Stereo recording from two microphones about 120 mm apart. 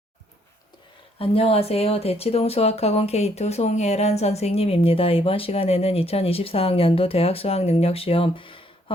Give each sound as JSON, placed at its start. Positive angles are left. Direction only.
{"t": 1.2, "sound": "speech", "side_deg": 50}